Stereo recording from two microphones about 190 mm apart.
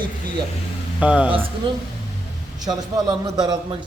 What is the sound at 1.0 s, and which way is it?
Speech, 5° right (ahead or behind).